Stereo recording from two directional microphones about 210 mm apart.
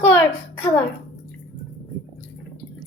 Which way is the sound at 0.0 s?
10° left (ahead or behind).